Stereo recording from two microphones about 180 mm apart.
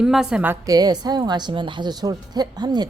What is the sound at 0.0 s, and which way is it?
A woman's voice, 5° right (ahead or behind).